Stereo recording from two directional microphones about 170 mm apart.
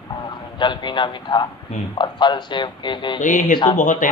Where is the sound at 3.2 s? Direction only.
50° left (ahead or behind).